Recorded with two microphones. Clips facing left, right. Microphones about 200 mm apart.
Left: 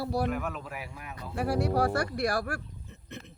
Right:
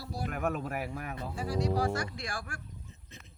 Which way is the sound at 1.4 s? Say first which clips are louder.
Left 4 dB; 65° left (ahead or behind).